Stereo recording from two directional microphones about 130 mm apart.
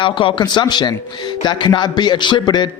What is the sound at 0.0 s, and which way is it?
A man's voice, 40° left (ahead or behind).